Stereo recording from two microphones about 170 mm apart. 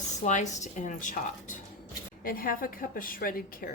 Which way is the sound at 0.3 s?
45° left (ahead or behind).